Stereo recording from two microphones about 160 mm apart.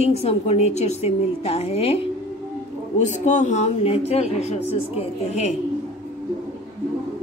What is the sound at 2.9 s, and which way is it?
A woman's voice, 50° left (ahead or behind).